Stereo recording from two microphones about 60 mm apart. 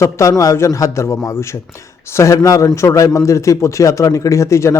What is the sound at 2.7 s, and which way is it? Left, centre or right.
A man's voice, left.